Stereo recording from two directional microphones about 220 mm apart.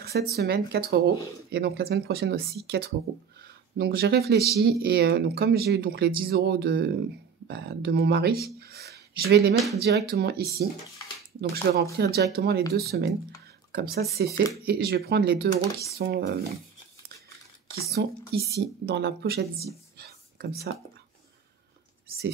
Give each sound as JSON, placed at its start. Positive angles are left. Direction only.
{"t": 0.0, "sound": "a sound", "side_deg": -45}
{"t": 0.4, "sound": "speech", "side_deg": -45}
{"t": 11.5, "sound": "speech", "side_deg": -45}
{"t": 17.9, "sound": "a woman's voice", "side_deg": -45}